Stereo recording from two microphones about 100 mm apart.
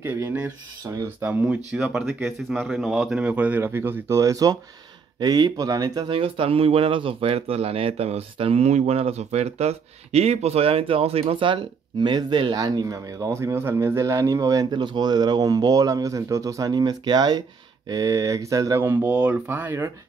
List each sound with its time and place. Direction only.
0.0 s speech: 20° right (ahead or behind)
1.4 s speech: 10° right (ahead or behind)
2.7 s speech: 5° right (ahead or behind); by 6.0 s 40° right (ahead or behind)
6.0 s speech: 65° right (ahead or behind)
12.5 s speech: 40° right (ahead or behind)